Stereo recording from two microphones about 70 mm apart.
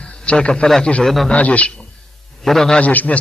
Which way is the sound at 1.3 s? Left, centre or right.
Centre.